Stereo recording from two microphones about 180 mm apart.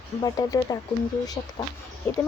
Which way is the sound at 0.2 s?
20° left (ahead or behind).